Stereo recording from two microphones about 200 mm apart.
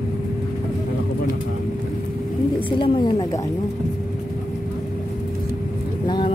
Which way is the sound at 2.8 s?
25° left (ahead or behind).